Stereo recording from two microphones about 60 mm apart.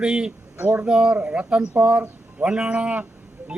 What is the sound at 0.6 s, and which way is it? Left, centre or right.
Speech, right.